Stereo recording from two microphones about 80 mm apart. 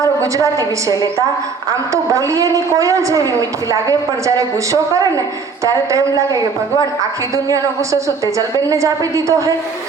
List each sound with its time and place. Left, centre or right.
1.9 s a woman's voice: right
7.5 s a woman's voice: right